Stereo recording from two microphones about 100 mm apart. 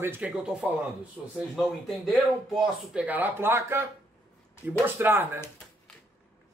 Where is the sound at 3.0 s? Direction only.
15° right (ahead or behind).